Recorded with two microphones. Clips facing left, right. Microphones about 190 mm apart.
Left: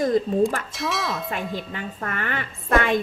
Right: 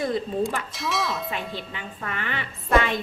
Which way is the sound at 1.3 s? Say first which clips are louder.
Left 3 dB; 45° left (ahead or behind).